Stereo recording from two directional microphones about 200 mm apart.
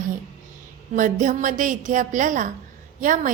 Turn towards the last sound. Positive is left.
turn(degrees=-40)  # may be behind; listen again after turning